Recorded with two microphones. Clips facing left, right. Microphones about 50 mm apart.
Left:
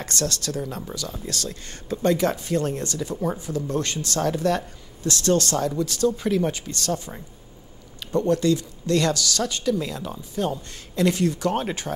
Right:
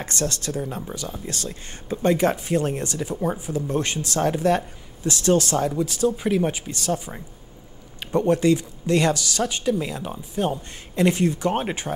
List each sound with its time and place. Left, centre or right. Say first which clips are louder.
0.0 s a man's voice: even; right